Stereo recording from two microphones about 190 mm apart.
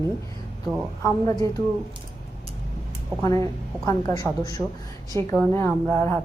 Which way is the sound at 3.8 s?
15° left (ahead or behind).